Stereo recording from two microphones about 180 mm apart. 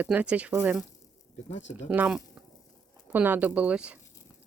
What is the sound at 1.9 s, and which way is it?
Speech, 10° right (ahead or behind).